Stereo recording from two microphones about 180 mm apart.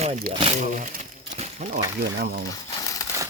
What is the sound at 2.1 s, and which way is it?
Speech, 55° right (ahead or behind).